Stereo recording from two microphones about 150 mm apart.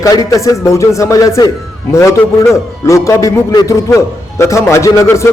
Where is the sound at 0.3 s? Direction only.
20° left (ahead or behind).